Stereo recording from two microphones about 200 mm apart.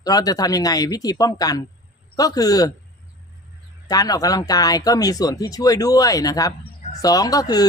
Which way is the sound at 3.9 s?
20° left (ahead or behind).